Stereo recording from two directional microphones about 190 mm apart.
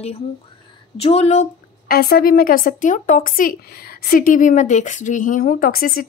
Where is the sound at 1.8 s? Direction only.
55° left (ahead or behind).